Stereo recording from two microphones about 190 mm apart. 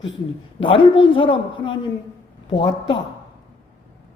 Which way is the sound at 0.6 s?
25° left (ahead or behind).